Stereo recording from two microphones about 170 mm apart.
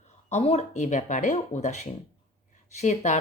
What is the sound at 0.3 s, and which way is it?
Speech, 40° left (ahead or behind).